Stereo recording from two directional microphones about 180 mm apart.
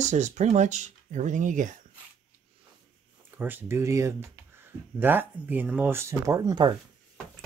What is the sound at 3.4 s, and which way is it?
Speech, 10° right (ahead or behind).